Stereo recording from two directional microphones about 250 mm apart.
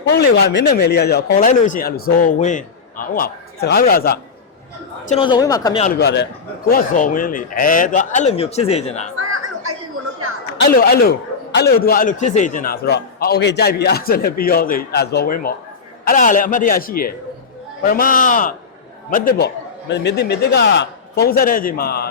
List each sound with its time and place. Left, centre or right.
0.1 s speech: left
5.0 s speech: left
5.8 s speech: left
10.6 s speech: left